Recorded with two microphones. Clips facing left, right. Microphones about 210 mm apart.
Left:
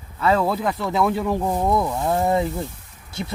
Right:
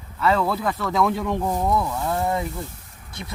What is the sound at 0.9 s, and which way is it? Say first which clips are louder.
Speech: left 1 dB; 5° left (ahead or behind).